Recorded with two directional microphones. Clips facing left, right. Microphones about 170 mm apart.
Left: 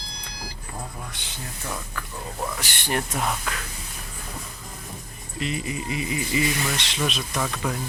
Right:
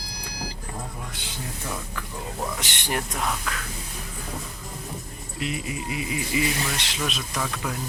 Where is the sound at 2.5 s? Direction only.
20° right (ahead or behind).